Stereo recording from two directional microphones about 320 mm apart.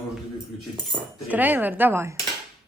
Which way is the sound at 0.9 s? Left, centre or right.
Centre.